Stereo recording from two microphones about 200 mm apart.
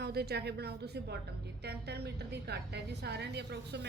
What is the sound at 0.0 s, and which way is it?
A woman's voice, 55° right (ahead or behind).